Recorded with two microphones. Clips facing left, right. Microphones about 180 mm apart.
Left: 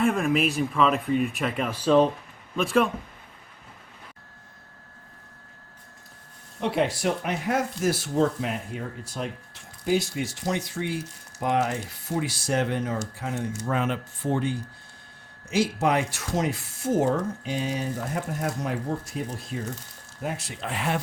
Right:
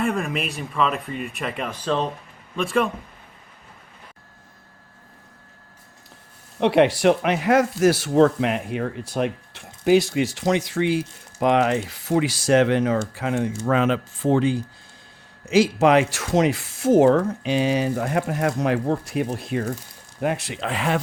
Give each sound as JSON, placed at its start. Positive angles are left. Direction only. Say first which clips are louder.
{"t": 0.0, "sound": "speech", "louder": "left 2 dB", "side_deg": 0}
{"t": 6.6, "sound": "speech", "louder": "right 8 dB", "side_deg": -75}